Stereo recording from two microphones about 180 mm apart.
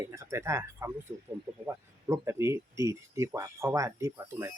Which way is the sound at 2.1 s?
15° right (ahead or behind).